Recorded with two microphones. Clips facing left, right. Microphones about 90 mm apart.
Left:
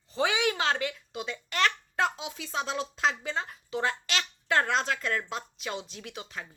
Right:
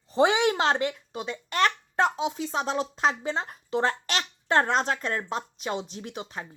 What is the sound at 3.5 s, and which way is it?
A child's voice, 40° right (ahead or behind).